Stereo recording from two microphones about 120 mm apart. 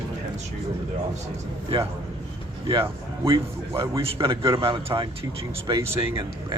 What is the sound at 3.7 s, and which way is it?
Speech, 25° right (ahead or behind).